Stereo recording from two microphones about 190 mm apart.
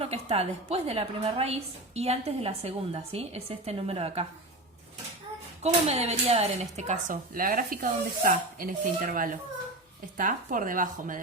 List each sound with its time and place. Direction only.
0.0 s a woman's voice: 35° right (ahead or behind)
5.6 s speech: 35° right (ahead or behind)